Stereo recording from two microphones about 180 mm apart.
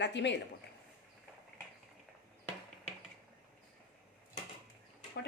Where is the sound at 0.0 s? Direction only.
80° left.